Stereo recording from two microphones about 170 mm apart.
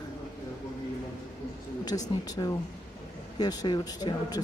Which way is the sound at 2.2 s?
20° left (ahead or behind).